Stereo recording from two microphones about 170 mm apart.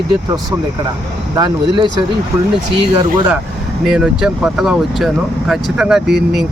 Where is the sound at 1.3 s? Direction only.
25° right (ahead or behind).